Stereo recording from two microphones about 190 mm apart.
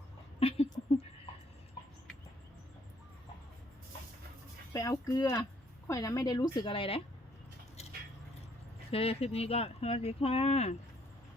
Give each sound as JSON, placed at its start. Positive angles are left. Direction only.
{"t": 0.3, "sound": "a sound", "side_deg": 30}
{"t": 4.7, "sound": "a woman's voice", "side_deg": 15}
{"t": 8.9, "sound": "speech", "side_deg": 30}